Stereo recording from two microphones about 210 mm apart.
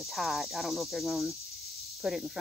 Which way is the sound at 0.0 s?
Centre (ahead or behind).